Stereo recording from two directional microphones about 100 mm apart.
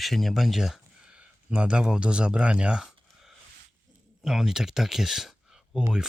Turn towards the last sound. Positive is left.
turn(degrees=-5)  # may be behind; listen again after turning